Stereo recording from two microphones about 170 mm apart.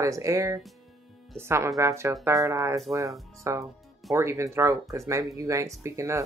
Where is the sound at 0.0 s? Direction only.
20° right (ahead or behind).